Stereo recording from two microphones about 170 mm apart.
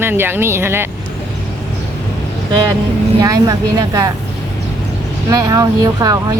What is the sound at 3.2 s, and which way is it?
Speech, 20° right (ahead or behind).